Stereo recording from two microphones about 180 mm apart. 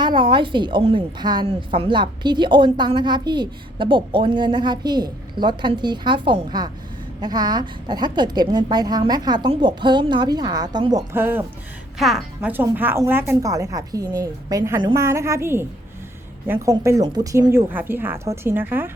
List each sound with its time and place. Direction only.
0.0 s a woman's voice: 25° right (ahead or behind)
11.1 s speech: 10° right (ahead or behind)
11.9 s speech: centre (ahead or behind)